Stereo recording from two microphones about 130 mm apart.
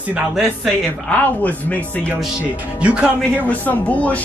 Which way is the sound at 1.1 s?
10° left (ahead or behind).